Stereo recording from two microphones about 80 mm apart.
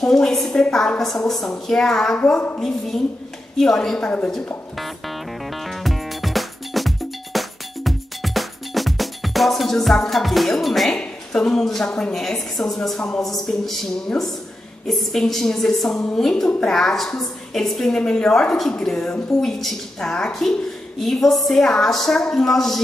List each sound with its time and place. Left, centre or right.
0.0 s a woman's voice: centre
3.5 s a woman's voice: centre
4.7 s music: centre
14.9 s a woman's voice: centre